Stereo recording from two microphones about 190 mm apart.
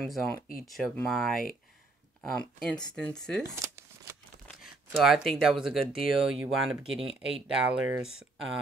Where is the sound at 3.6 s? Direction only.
15° right (ahead or behind).